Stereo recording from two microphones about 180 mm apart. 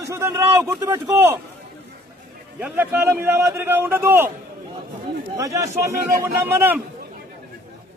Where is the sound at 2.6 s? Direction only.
10° right (ahead or behind).